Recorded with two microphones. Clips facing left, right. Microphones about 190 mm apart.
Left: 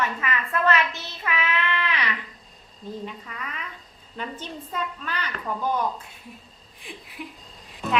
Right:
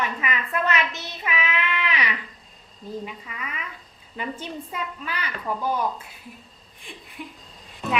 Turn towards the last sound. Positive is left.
turn(degrees=0)  # may be behind; listen again after turning